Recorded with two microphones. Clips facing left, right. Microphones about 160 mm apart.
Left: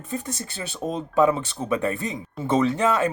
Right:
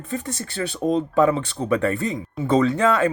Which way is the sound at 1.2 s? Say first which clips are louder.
Left 2 dB; 20° left (ahead or behind).